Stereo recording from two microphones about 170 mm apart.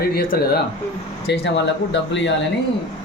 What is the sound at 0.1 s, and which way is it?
Speech, 65° left (ahead or behind).